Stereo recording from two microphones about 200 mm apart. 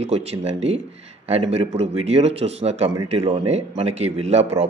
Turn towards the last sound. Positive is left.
turn(degrees=-35)  # may be behind; listen again after turning